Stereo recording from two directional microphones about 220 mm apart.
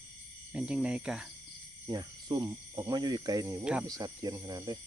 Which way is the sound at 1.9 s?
20° right (ahead or behind).